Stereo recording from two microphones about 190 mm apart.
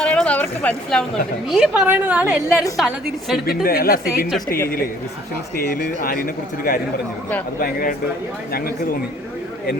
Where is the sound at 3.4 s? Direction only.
50° left (ahead or behind).